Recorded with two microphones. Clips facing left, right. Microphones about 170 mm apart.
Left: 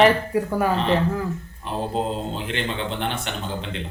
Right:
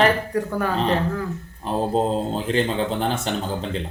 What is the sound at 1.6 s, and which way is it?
Speech, 40° right (ahead or behind).